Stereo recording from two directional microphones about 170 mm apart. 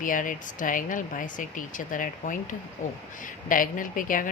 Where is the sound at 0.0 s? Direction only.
50° left (ahead or behind).